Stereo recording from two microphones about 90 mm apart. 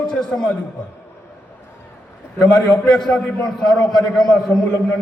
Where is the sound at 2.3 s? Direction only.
5° left (ahead or behind).